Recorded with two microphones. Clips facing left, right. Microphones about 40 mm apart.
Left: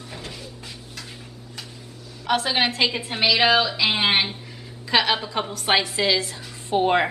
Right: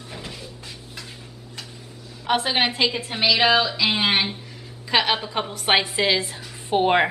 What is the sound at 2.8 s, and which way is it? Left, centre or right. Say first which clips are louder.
A woman's voice: even; centre.